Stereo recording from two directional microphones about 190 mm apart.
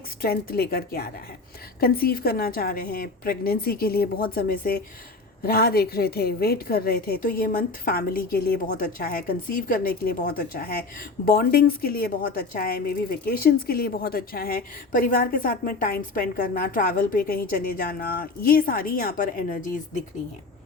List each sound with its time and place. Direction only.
0.2 s a woman's voice: 55° left (ahead or behind)